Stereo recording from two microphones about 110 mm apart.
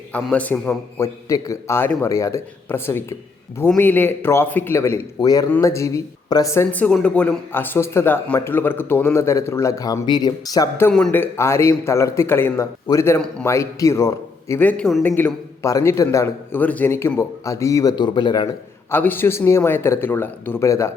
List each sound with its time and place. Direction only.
0.3 s speech: 15° left (ahead or behind)
0.9 s a man's voice: 25° left (ahead or behind)
5.2 s a man's voice: 35° left (ahead or behind)
6.5 s a man's voice: 20° left (ahead or behind); by 10.7 s 35° left (ahead or behind)
11.1 s a man's voice: 20° left (ahead or behind)
14.6 s speech: 15° left (ahead or behind)
15.6 s a man's voice: 25° left (ahead or behind); by 18.4 s 40° left (ahead or behind)
18.9 s a man's voice: 20° left (ahead or behind)